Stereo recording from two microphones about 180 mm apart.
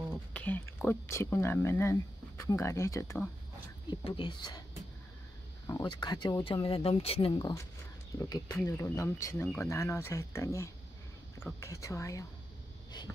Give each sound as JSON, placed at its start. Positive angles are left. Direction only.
{"t": 0.3, "sound": "speech", "side_deg": 10}
{"t": 3.9, "sound": "speech", "side_deg": 25}
{"t": 5.7, "sound": "speech", "side_deg": 20}